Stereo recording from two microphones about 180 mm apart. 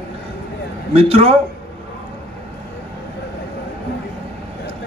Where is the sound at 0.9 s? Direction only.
35° right (ahead or behind).